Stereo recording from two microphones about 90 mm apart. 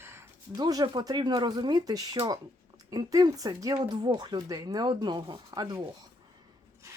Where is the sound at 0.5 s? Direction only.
50° right (ahead or behind).